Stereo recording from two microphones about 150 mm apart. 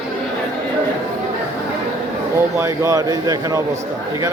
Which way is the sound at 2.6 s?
20° right (ahead or behind).